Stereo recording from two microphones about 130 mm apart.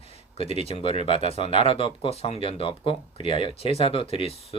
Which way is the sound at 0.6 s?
50° left (ahead or behind).